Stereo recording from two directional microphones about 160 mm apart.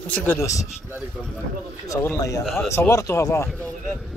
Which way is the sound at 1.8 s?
20° left (ahead or behind).